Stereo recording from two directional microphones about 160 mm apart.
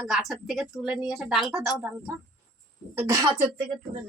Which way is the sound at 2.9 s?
20° right (ahead or behind).